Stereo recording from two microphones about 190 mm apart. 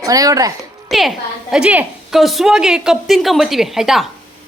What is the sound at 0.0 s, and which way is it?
Speech, 20° right (ahead or behind).